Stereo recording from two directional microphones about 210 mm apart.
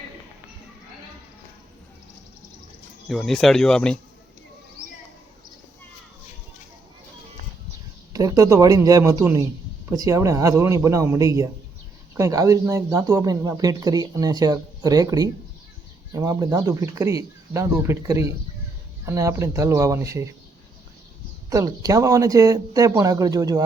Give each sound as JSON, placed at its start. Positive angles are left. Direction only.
{"t": 3.1, "sound": "speech", "side_deg": 0}
{"t": 8.1, "sound": "speech", "side_deg": -15}
{"t": 21.5, "sound": "speech", "side_deg": -15}